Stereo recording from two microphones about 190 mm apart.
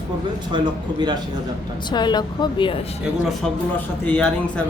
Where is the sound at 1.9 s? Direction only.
20° left (ahead or behind).